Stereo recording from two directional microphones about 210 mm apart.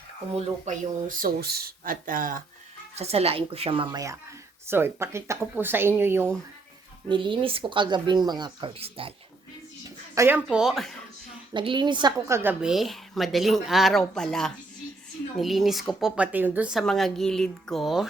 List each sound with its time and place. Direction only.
0.3 s speech: 35° right (ahead or behind)
3.0 s a woman's voice: 30° right (ahead or behind); by 6.3 s 10° right (ahead or behind)
7.1 s a woman's voice: 25° right (ahead or behind)
10.2 s a woman's voice: 10° right (ahead or behind)
11.5 s a woman's voice: 20° right (ahead or behind); by 18.1 s centre (ahead or behind)